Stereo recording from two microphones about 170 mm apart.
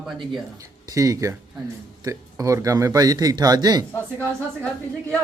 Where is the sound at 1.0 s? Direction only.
20° right (ahead or behind).